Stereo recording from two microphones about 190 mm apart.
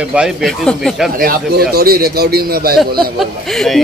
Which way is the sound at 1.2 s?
50° right (ahead or behind).